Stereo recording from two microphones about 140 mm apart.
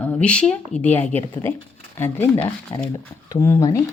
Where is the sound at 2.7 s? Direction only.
30° left (ahead or behind).